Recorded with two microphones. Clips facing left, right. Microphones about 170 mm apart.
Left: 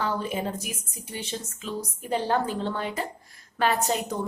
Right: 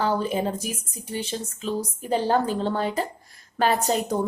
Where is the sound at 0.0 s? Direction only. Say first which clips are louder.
Right 4 dB; 35° right (ahead or behind).